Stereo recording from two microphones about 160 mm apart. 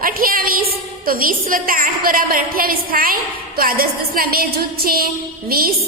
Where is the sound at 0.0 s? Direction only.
65° right (ahead or behind).